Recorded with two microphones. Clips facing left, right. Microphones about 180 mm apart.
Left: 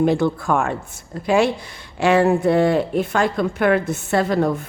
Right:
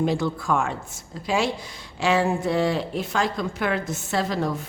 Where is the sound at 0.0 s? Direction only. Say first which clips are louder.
Left 6 dB; 60° left (ahead or behind).